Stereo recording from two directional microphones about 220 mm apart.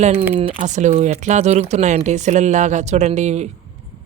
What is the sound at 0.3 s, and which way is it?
Speech, 30° right (ahead or behind).